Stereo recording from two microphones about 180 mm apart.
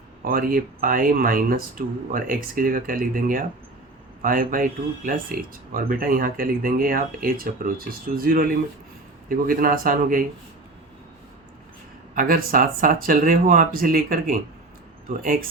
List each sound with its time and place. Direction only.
0.3 s speech: 55° right (ahead or behind)
12.1 s speech: 50° right (ahead or behind)